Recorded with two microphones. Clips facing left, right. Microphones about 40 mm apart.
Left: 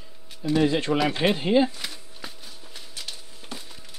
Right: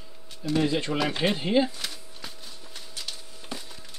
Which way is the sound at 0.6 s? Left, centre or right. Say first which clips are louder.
Left 3 dB; left.